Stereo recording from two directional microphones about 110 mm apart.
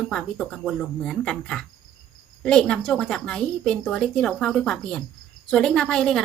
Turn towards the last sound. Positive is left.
turn(degrees=5)  # may be behind; listen again after turning